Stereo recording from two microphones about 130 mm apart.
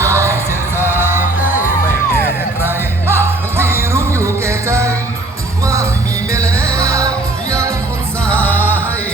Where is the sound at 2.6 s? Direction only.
20° right (ahead or behind).